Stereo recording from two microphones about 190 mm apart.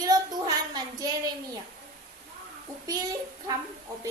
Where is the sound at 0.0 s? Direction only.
20° right (ahead or behind).